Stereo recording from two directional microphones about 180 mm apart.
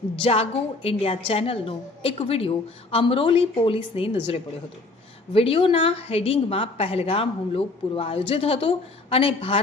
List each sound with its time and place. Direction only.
0.2 s a woman's voice: 30° left (ahead or behind)